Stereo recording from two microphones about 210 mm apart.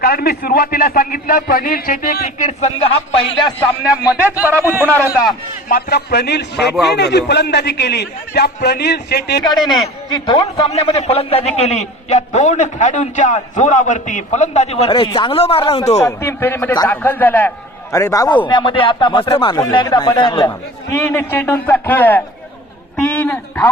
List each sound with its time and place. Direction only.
0.0 s a man's voice: 45° left (ahead or behind); by 3.5 s 25° left (ahead or behind)
4.0 s a man's voice: 5° right (ahead or behind)
5.6 s a man's voice: 45° left (ahead or behind)
9.4 s speech: 20° left (ahead or behind)
10.7 s a man's voice: 30° left (ahead or behind)
16.0 s a man's voice: 10° left (ahead or behind)
20.9 s a man's voice: 10° left (ahead or behind)
23.2 s a man's voice: 5° left (ahead or behind)